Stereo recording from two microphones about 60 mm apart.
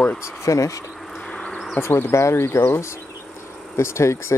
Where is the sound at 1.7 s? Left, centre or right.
Left.